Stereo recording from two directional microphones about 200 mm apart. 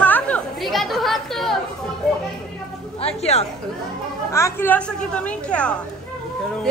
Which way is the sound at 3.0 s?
30° left (ahead or behind).